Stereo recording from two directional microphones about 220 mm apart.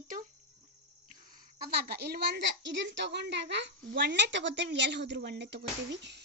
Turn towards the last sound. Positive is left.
turn(degrees=-50)  # may be behind; listen again after turning